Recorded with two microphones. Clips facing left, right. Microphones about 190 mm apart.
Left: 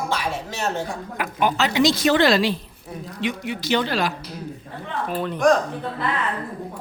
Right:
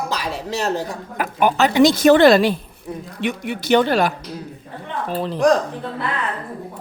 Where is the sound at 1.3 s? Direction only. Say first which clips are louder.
Right 5 dB; 55° right (ahead or behind).